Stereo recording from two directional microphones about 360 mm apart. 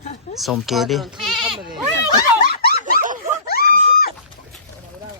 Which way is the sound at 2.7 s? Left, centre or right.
Right.